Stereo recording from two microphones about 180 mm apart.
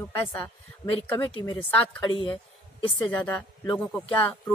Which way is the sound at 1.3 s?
30° left (ahead or behind).